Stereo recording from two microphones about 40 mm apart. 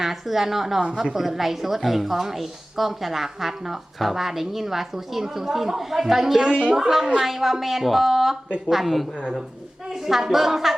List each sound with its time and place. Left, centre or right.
0.0 s a woman's voice: centre
0.8 s speech: right
1.1 s a woman's voice: centre